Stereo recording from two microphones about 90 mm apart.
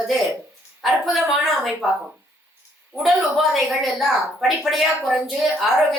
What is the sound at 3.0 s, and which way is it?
A woman's voice, centre (ahead or behind).